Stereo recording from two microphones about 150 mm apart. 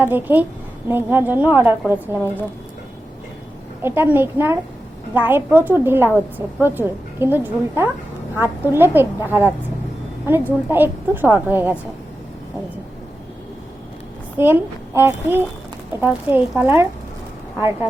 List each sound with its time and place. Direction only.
0.0 s a woman's voice: 15° right (ahead or behind)
3.8 s a woman's voice: 15° right (ahead or behind)
14.3 s a woman's voice: 15° right (ahead or behind)